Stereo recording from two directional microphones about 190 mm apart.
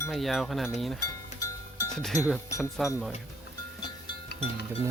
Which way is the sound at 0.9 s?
15° left (ahead or behind).